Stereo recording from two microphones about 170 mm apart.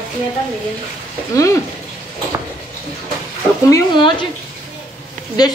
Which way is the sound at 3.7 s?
25° left (ahead or behind).